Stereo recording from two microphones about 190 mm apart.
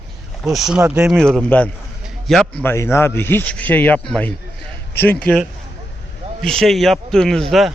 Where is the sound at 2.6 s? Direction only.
15° left (ahead or behind).